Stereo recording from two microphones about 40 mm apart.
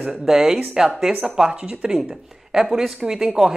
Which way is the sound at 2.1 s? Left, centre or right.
Centre.